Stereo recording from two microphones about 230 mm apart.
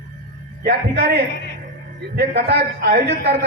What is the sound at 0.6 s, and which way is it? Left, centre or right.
A man's voice, right.